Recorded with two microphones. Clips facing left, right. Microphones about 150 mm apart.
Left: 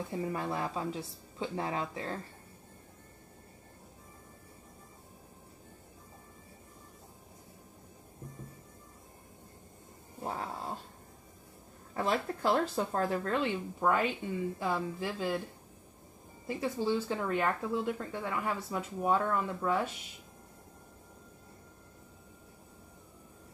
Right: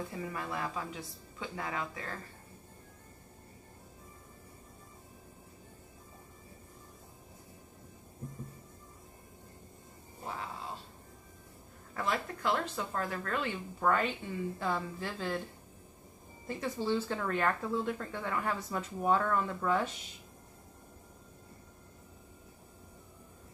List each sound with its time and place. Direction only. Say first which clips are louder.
0.1 s speech: left 4 dB; 30° left (ahead or behind)
10.2 s a sound: left 4 dB; 40° left (ahead or behind)
11.9 s speech: left 3 dB; 30° left (ahead or behind); by 15.3 s 15° left (ahead or behind)
16.4 s speech: left 2 dB; 10° left (ahead or behind)